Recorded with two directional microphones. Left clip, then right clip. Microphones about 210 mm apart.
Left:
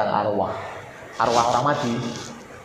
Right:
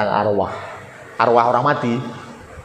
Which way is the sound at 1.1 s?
50° right (ahead or behind).